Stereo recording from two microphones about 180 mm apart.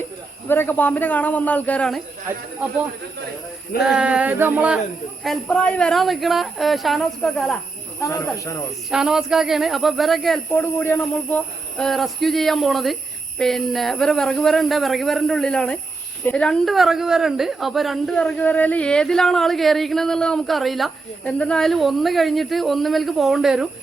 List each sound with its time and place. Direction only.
0.4 s speech: 10° left (ahead or behind)
3.8 s a sound: 5° right (ahead or behind)
5.2 s a woman's voice: 5° left (ahead or behind)
8.0 s speech: 15° left (ahead or behind)
8.9 s a woman's voice: 5° right (ahead or behind)